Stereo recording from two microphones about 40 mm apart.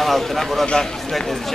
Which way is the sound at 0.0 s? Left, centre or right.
Centre.